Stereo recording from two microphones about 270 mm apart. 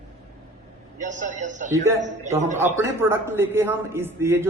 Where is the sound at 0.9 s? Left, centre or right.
Right.